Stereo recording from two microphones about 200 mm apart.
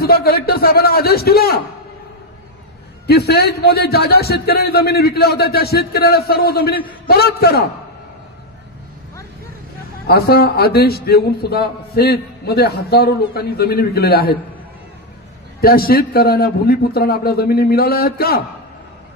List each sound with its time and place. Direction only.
0.0 s a man's voice: 50° left (ahead or behind)
3.1 s a man's voice: 55° left (ahead or behind)
10.0 s a man's voice: 50° left (ahead or behind)
15.6 s a man's voice: 50° left (ahead or behind)